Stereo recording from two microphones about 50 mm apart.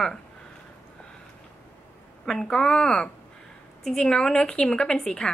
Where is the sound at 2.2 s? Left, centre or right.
Centre.